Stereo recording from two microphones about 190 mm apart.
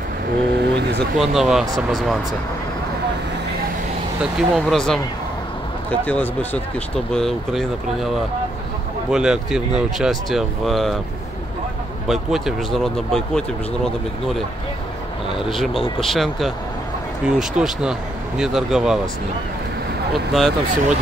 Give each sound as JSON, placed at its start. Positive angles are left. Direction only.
{"t": 0.7, "sound": "vehicle", "side_deg": -60}
{"t": 1.1, "sound": "speech", "side_deg": 0}
{"t": 4.2, "sound": "speech", "side_deg": -5}
{"t": 12.1, "sound": "speech", "side_deg": 0}
{"t": 20.3, "sound": "speech", "side_deg": 0}